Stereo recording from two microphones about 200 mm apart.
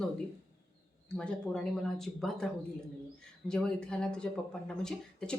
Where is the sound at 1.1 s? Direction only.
5° left (ahead or behind).